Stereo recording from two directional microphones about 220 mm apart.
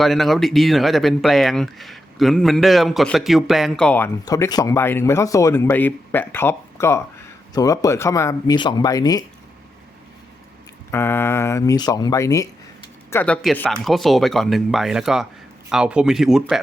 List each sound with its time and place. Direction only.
0.0 s speech: centre (ahead or behind); by 9.2 s 15° left (ahead or behind)
10.9 s speech: 10° left (ahead or behind)